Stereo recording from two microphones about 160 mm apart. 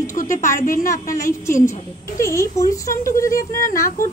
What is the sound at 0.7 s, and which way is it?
Speech, 60° left (ahead or behind).